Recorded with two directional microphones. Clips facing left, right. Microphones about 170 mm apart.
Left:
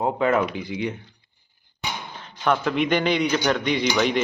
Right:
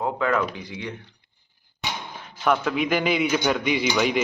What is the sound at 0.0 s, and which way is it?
Speech, 25° left (ahead or behind).